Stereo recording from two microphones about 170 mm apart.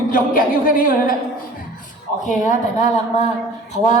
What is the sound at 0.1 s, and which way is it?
Speech, 55° left (ahead or behind).